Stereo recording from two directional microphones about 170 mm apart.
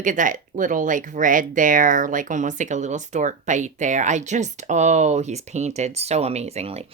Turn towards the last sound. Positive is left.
turn(degrees=-40)  # may be behind; listen again after turning